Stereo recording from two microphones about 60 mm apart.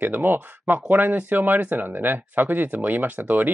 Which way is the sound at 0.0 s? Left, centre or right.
Right.